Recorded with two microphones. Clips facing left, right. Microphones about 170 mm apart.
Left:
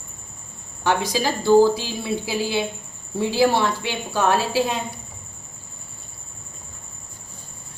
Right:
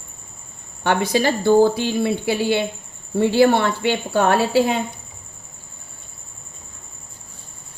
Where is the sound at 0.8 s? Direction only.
60° right (ahead or behind).